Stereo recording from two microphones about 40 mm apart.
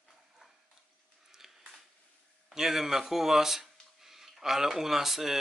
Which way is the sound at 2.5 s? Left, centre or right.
Centre.